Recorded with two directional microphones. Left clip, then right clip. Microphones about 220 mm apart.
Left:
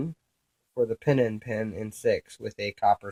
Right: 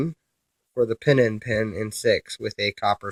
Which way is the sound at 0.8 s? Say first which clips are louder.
Right 5 dB; 35° right (ahead or behind).